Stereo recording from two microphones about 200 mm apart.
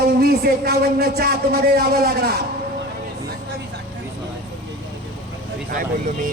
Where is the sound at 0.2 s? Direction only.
50° right (ahead or behind).